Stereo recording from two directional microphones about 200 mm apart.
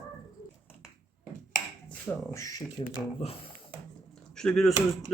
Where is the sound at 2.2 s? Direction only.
15° left (ahead or behind).